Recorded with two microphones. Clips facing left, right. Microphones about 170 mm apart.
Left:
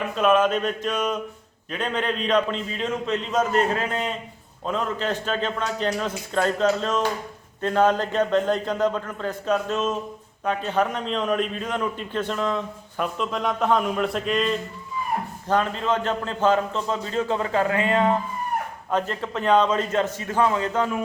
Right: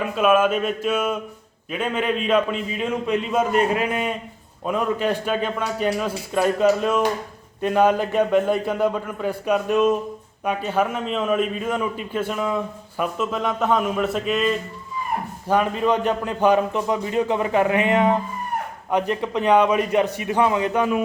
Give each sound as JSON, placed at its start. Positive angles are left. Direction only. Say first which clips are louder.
{"t": 0.2, "sound": "a man's voice", "louder": "right 1 dB", "side_deg": -5}